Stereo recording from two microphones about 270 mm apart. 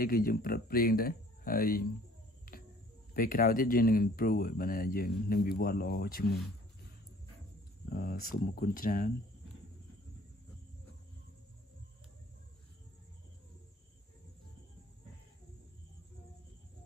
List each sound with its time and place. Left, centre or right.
0.0 s speech: left
3.2 s speech: left
7.9 s speech: left